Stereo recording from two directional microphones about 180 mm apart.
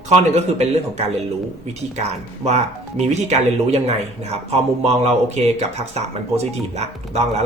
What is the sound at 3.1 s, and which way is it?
Speech, 40° right (ahead or behind).